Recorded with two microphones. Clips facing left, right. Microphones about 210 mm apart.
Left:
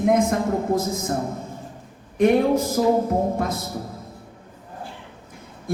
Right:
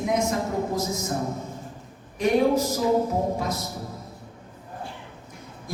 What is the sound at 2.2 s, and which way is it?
A woman's voice, 55° left (ahead or behind).